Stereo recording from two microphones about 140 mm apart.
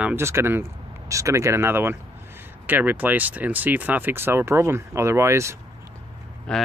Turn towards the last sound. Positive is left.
turn(degrees=5)  # may be behind; listen again after turning